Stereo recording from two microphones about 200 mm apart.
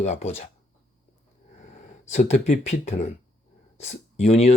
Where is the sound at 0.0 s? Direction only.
35° left (ahead or behind).